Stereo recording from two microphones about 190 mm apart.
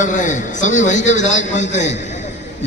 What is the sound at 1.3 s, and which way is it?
Speech, 80° left.